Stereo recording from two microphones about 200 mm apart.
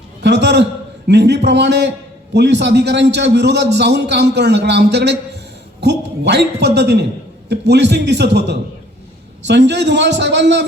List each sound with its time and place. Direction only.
0.2 s a man's voice: 60° right (ahead or behind)